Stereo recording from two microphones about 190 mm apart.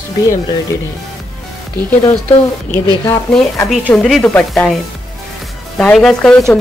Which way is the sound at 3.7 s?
5° left (ahead or behind).